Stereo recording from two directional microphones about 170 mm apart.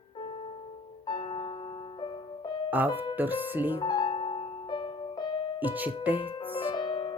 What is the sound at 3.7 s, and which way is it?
Music, 25° left (ahead or behind).